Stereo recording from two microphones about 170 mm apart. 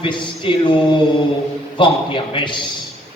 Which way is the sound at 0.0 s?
30° left (ahead or behind).